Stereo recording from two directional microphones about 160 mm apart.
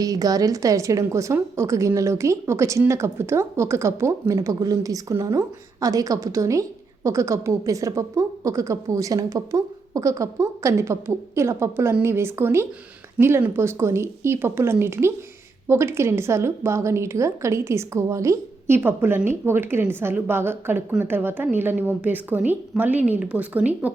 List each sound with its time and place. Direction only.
0.0 s a woman's voice: 25° right (ahead or behind)